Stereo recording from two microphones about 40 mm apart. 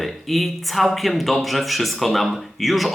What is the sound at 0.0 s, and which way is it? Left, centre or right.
Speech, centre.